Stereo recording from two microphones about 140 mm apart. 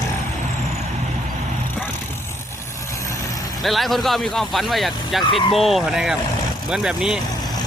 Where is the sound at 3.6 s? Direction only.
Centre (ahead or behind).